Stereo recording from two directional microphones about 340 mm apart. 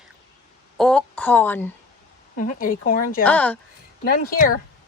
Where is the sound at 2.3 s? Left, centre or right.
Left.